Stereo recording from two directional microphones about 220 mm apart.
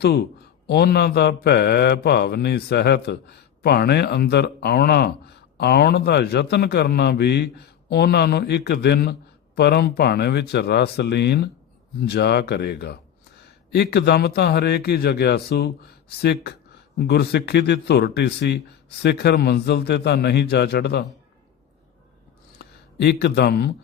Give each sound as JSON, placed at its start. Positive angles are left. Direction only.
{"t": 0.7, "sound": "mantra", "side_deg": 45}
{"t": 22.5, "sound": "speech", "side_deg": 50}